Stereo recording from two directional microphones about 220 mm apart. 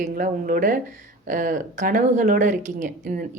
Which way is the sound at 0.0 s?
40° right (ahead or behind).